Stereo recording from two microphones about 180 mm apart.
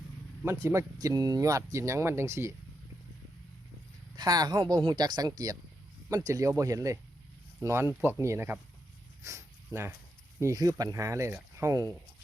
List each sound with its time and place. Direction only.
0.4 s speech: 15° right (ahead or behind)
4.2 s speech: 20° right (ahead or behind)
9.2 s dog: 15° right (ahead or behind)
10.4 s speech: 20° right (ahead or behind)